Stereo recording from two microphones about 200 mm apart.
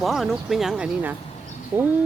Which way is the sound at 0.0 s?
Centre (ahead or behind).